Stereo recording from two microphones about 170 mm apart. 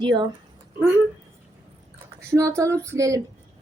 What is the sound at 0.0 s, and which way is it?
Speech, 25° right (ahead or behind).